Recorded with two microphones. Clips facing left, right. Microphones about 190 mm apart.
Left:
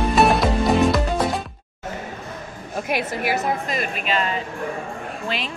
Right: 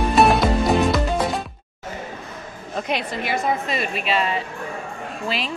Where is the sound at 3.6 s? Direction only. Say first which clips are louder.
Right 1 dB; 45° left (ahead or behind).